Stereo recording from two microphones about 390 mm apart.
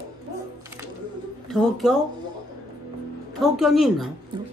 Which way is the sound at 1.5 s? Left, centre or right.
Centre.